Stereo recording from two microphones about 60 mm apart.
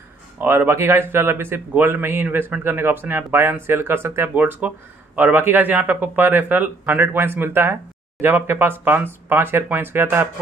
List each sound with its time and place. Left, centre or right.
0.4 s speech: right
4.3 s speech: right